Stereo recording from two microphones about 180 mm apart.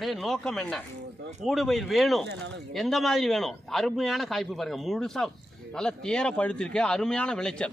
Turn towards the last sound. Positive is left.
turn(degrees=5)  # may be behind; listen again after turning